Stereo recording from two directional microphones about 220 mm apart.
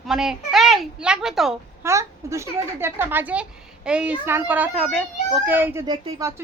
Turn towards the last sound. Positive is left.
turn(degrees=-15)  # may be behind; listen again after turning